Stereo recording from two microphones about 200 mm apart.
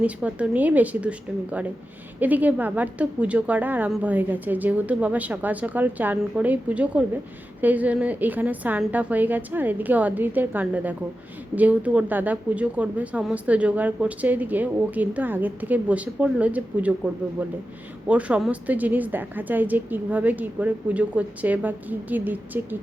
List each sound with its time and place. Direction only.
0.0 s a woman's voice: 5° right (ahead or behind)
18.1 s a woman's voice: 5° right (ahead or behind)